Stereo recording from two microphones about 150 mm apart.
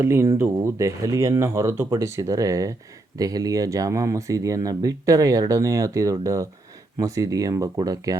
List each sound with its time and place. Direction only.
0.0 s speech: 20° right (ahead or behind)